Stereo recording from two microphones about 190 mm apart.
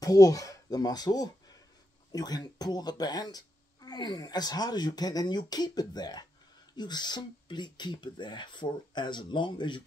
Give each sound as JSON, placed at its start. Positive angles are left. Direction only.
{"t": 0.0, "sound": "speech", "side_deg": 20}